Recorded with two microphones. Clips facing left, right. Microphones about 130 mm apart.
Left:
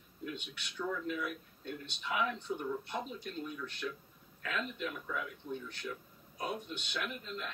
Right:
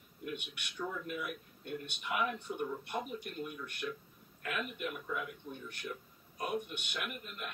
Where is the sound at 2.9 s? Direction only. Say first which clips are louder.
Right 1 dB; 10° right (ahead or behind).